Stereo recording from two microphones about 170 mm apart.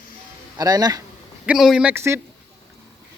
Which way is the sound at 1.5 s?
5° right (ahead or behind).